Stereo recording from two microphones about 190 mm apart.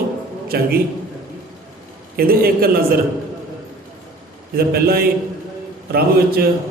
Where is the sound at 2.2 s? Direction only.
50° right (ahead or behind).